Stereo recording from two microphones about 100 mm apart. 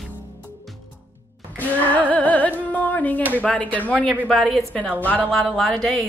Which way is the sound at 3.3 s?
15° left (ahead or behind).